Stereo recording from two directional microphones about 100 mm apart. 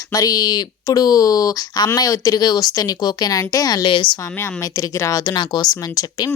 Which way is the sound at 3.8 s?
55° left (ahead or behind).